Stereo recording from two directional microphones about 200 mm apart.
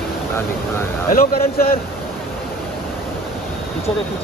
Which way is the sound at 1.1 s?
50° left (ahead or behind).